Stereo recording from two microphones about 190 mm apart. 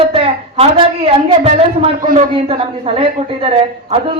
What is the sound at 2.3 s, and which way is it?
A woman's voice, 30° right (ahead or behind).